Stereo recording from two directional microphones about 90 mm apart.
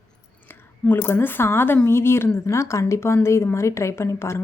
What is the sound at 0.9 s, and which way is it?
A woman's voice, 25° left (ahead or behind).